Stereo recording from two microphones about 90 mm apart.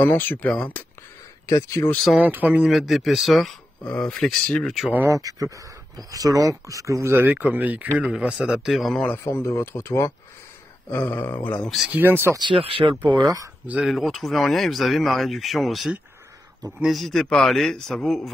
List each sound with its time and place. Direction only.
0.0 s speech: 25° left (ahead or behind)
1.4 s speech: 35° left (ahead or behind)
2.1 s speech: 15° right (ahead or behind)
2.7 s speech: centre (ahead or behind)
5.0 s speech: 40° right (ahead or behind); by 9.0 s centre (ahead or behind)
9.0 s speech: 25° left (ahead or behind)
11.6 s speech: centre (ahead or behind)
11.9 s speech: 25° right (ahead or behind)
12.4 s speech: 75° right (ahead or behind)
13.7 s speech: 15° right (ahead or behind)
13.9 s speech: centre (ahead or behind)